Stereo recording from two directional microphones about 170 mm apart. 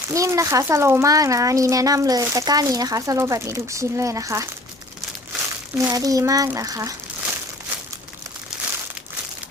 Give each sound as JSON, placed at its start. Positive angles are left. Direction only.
{"t": 0.1, "sound": "a child's voice", "side_deg": -20}
{"t": 5.7, "sound": "a child's voice", "side_deg": -20}